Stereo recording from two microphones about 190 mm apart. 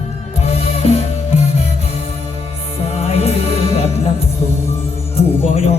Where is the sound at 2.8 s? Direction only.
30° left (ahead or behind).